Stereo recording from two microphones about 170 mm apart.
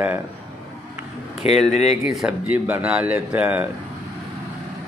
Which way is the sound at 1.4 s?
40° left (ahead or behind).